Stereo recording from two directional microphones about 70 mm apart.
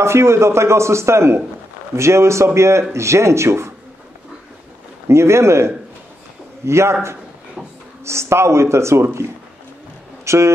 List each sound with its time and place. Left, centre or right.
0.0 s a man's voice: right
5.0 s a man's voice: right